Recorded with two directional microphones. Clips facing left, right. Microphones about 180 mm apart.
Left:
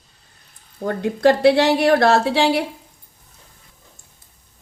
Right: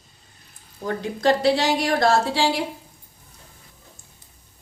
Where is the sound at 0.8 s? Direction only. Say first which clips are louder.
Left 6 dB; 55° left (ahead or behind).